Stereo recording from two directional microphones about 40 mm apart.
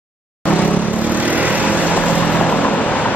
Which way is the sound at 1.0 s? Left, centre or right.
Right.